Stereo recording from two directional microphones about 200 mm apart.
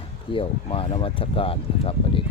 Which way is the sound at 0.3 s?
25° left (ahead or behind).